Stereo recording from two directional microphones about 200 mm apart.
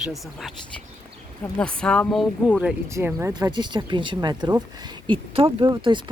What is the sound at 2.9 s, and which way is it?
Speech, 15° right (ahead or behind).